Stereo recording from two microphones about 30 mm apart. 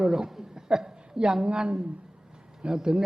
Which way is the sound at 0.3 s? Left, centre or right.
Centre.